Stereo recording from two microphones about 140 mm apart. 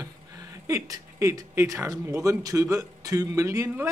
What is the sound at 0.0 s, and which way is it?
Speech, 25° right (ahead or behind).